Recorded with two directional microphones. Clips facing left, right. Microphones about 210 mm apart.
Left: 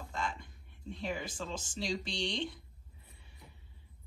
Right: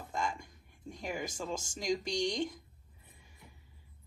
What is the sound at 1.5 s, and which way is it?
Speech, 45° right (ahead or behind).